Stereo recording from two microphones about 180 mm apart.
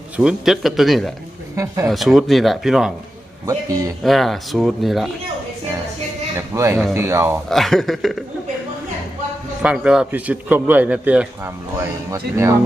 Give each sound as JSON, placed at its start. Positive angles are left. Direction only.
{"t": 0.2, "sound": "speech", "side_deg": -5}
{"t": 1.5, "sound": "a man's voice", "side_deg": -15}
{"t": 1.9, "sound": "speech", "side_deg": 0}
{"t": 3.4, "sound": "speech", "side_deg": -20}
{"t": 4.0, "sound": "speech", "side_deg": 0}
{"t": 6.3, "sound": "a man's voice", "side_deg": -15}
{"t": 7.5, "sound": "speech", "side_deg": 0}
{"t": 9.6, "sound": "a man's voice", "side_deg": -5}